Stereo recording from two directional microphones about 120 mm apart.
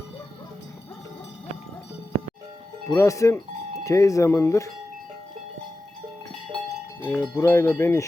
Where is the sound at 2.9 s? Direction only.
25° left (ahead or behind).